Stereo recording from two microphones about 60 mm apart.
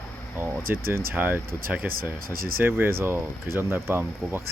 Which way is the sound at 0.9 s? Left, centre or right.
Right.